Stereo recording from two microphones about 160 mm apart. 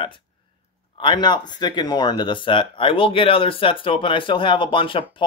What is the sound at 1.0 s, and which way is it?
Speech, 30° left (ahead or behind).